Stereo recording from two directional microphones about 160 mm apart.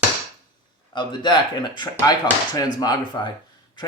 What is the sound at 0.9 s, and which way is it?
Speech, 30° left (ahead or behind).